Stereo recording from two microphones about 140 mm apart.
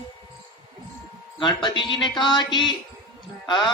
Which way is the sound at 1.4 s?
35° left (ahead or behind).